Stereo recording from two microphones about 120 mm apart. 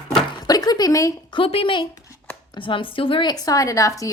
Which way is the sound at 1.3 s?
50° left (ahead or behind).